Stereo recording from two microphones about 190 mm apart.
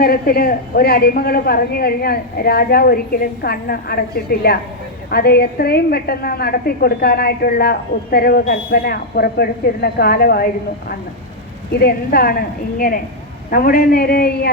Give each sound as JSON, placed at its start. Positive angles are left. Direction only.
{"t": 0.0, "sound": "a woman's voice", "side_deg": 50}